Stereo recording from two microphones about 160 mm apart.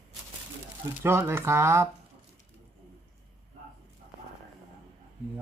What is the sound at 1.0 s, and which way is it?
Speech, 15° right (ahead or behind).